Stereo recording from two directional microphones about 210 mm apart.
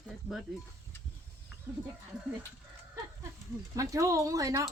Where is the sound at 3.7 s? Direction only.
15° right (ahead or behind).